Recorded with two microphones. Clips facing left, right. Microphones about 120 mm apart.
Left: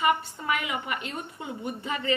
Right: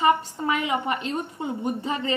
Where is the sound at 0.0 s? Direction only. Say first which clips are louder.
Right 4 dB; 35° right (ahead or behind).